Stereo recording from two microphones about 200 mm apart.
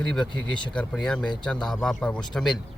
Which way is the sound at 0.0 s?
5° left (ahead or behind).